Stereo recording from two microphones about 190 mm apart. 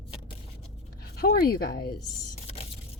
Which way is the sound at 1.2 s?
55° left (ahead or behind).